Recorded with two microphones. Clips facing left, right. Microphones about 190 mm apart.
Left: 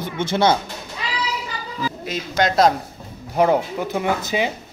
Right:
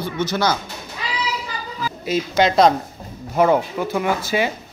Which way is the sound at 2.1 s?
Centre (ahead or behind).